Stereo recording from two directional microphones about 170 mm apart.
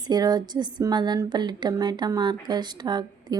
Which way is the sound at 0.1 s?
25° right (ahead or behind).